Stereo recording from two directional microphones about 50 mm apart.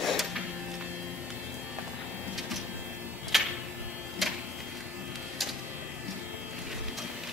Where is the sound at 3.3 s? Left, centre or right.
Centre.